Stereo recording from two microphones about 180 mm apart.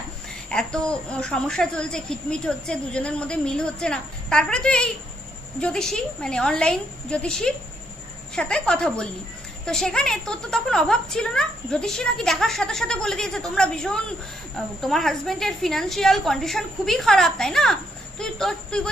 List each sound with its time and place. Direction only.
0.5 s a woman's voice: 5° left (ahead or behind)